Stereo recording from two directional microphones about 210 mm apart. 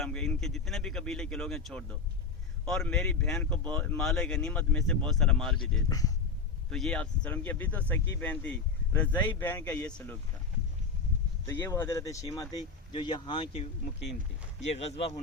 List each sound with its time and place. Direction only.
0.0 s speech: 5° left (ahead or behind)
6.7 s speech: 5° left (ahead or behind)
11.4 s speech: 10° left (ahead or behind); by 15.2 s 30° left (ahead or behind)